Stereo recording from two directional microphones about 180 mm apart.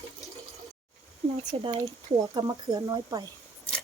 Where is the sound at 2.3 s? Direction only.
20° right (ahead or behind).